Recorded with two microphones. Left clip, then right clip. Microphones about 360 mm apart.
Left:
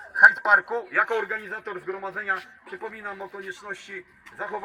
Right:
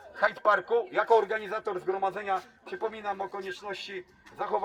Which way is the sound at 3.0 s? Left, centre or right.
Centre.